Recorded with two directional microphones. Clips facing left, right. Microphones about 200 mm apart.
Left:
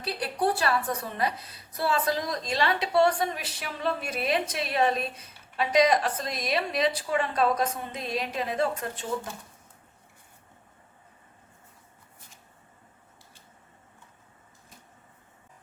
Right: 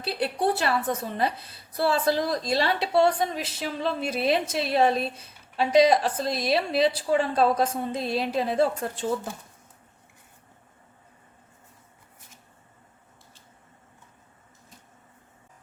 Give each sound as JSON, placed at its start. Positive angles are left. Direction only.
{"t": 0.0, "sound": "a woman's voice", "side_deg": -25}